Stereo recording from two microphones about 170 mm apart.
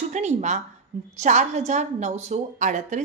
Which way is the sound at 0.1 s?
45° right (ahead or behind).